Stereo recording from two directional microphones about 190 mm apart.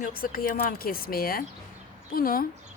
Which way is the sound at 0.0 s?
50° left (ahead or behind).